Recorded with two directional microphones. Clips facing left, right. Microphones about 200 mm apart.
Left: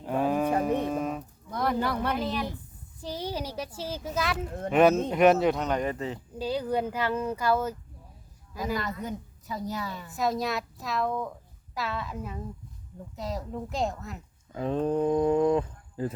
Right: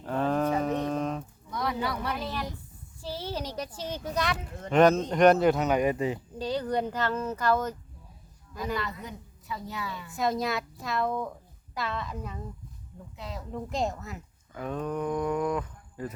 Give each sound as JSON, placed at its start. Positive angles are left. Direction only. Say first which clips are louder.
{"t": 0.0, "sound": "livestock", "louder": "left 1 dB", "side_deg": 10}
{"t": 0.6, "sound": "a sound", "louder": "left 1 dB", "side_deg": 10}
{"t": 1.5, "sound": "a sound", "louder": "left 3 dB", "side_deg": 50}
{"t": 3.0, "sound": "speech", "louder": "left 1 dB", "side_deg": 15}
{"t": 6.4, "sound": "speech", "louder": "left 1 dB", "side_deg": 10}
{"t": 8.7, "sound": "a woman's voice", "louder": "left 3 dB", "side_deg": 45}
{"t": 10.1, "sound": "speech", "louder": "even", "side_deg": 0}
{"t": 13.1, "sound": "a woman's voice", "louder": "left 6 dB", "side_deg": 40}
{"t": 13.5, "sound": "speech", "louder": "right 2 dB", "side_deg": 0}
{"t": 14.5, "sound": "speech", "louder": "left 5 dB", "side_deg": 30}